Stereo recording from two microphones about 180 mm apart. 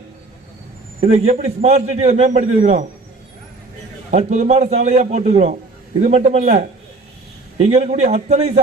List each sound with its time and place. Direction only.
1.0 s a man's voice: 35° right (ahead or behind)
4.1 s a man's voice: 40° right (ahead or behind)
7.7 s a man's voice: 35° right (ahead or behind)